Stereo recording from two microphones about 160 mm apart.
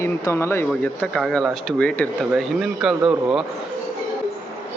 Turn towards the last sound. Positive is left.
turn(degrees=-5)  # may be behind; listen again after turning